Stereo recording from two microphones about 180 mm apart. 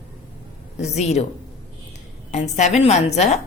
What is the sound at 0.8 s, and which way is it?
Speech, 40° left (ahead or behind).